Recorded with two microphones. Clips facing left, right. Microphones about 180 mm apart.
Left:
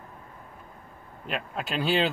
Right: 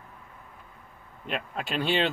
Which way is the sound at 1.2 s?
Centre (ahead or behind).